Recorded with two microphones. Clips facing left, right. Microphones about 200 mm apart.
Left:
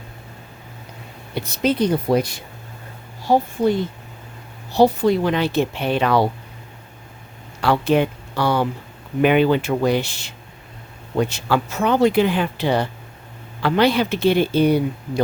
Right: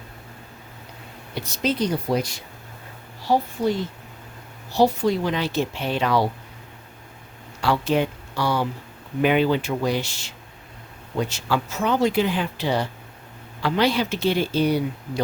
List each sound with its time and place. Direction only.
1.4 s speech: 60° left (ahead or behind)
7.6 s speech: 60° left (ahead or behind)